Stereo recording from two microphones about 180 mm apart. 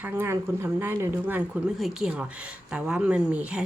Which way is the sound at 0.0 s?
15° right (ahead or behind).